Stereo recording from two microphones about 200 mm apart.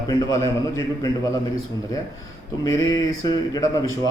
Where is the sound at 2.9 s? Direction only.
20° left (ahead or behind).